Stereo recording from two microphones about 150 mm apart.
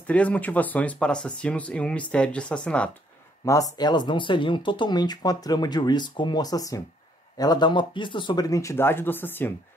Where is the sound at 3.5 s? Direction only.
25° left (ahead or behind).